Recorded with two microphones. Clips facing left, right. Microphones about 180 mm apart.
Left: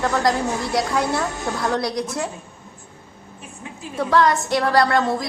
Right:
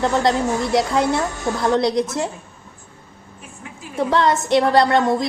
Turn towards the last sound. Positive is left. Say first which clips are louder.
# right 3 dB
turn(degrees=-20)  # may be behind; listen again after turning